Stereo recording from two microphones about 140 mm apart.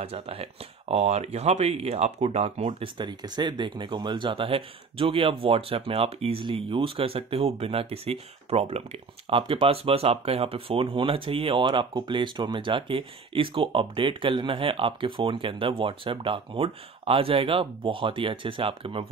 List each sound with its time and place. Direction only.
0.0 s speech: 45° right (ahead or behind)